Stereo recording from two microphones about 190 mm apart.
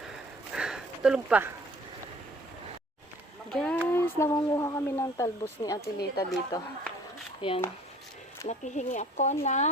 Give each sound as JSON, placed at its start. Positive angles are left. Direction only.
{"t": 0.1, "sound": "a sound", "side_deg": -5}
{"t": 3.5, "sound": "speech", "side_deg": 5}
{"t": 8.4, "sound": "speech", "side_deg": 40}